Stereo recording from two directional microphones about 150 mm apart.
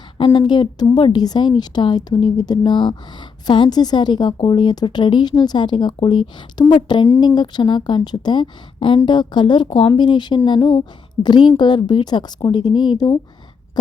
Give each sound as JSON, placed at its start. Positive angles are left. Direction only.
{"t": 0.3, "sound": "a woman's voice", "side_deg": 30}